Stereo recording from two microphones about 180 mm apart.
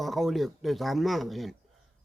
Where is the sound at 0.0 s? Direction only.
Centre (ahead or behind).